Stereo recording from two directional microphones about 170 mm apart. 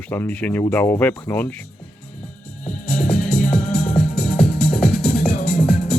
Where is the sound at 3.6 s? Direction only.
60° left (ahead or behind).